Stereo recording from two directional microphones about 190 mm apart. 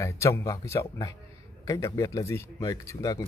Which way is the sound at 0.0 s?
15° left (ahead or behind).